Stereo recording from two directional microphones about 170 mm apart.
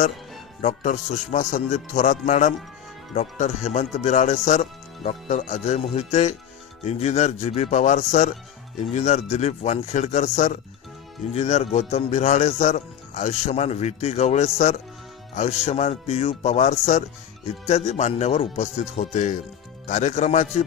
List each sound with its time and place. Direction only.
0.6 s speech: 45° left (ahead or behind)